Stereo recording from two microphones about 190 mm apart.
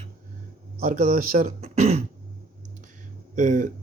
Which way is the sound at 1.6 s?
35° right (ahead or behind).